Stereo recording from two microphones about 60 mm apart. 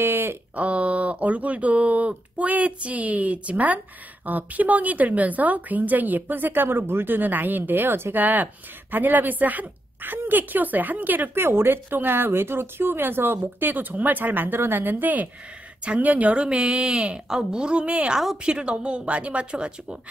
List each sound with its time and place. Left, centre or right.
0.0 s a sound: right
0.6 s speech: right
8.2 s a woman's voice: right